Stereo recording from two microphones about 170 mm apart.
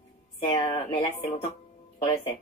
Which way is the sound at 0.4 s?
30° left (ahead or behind).